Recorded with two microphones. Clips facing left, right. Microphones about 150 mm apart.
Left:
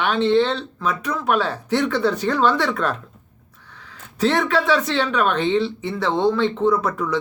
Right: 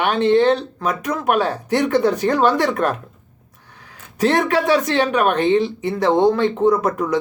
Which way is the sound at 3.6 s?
15° right (ahead or behind).